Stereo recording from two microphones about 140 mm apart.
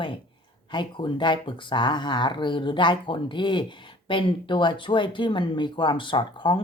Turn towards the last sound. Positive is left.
turn(degrees=35)  # may be behind; listen again after turning